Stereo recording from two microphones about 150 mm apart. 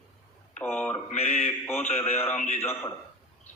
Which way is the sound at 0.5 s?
10° left (ahead or behind).